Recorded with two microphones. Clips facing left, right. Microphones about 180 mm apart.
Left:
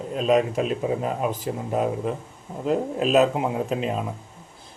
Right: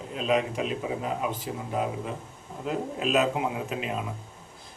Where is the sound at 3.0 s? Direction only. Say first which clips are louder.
Left 5 dB; 40° left (ahead or behind).